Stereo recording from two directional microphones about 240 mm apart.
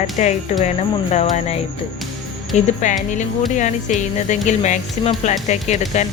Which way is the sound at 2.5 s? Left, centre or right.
Left.